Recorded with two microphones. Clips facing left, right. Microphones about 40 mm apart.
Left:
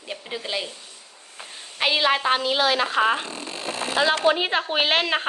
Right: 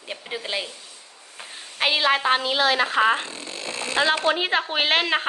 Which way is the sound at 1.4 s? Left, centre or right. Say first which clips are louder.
Even; centre.